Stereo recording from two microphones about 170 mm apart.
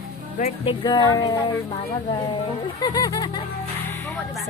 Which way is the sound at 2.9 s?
25° left (ahead or behind).